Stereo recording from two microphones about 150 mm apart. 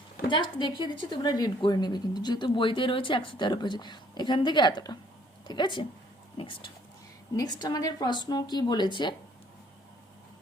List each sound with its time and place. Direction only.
0.3 s a woman's voice: 30° left (ahead or behind)